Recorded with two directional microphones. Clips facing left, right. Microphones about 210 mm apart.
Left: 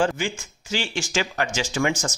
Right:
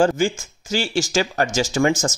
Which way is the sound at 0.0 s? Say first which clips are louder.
Right 6 dB; 40° right (ahead or behind).